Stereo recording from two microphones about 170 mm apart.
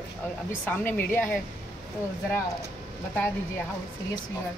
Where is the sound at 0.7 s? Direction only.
10° left (ahead or behind).